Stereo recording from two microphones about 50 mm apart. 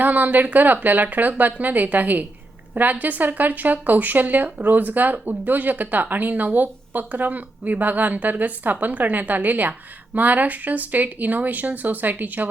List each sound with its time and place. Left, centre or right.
0.0 s speech: right